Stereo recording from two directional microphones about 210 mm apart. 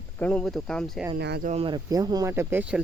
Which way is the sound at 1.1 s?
50° right (ahead or behind).